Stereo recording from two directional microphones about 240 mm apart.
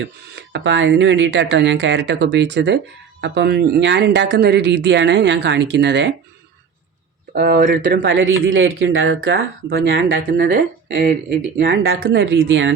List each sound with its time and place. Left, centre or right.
0.5 s speech: right
7.3 s speech: right
9.6 s speech: right
12.0 s speech: right